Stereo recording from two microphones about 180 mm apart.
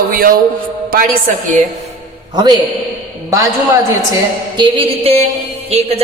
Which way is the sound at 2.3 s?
20° right (ahead or behind).